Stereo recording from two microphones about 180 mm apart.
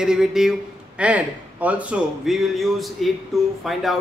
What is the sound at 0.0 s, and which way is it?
A man's voice, 5° right (ahead or behind).